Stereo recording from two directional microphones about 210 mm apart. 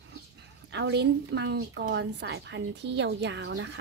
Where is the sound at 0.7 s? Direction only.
55° right (ahead or behind).